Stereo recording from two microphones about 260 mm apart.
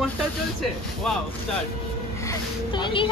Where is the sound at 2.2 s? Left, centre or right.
Centre.